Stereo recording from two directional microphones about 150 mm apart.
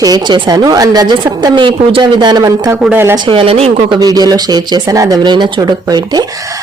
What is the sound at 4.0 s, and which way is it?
Speech, 25° right (ahead or behind).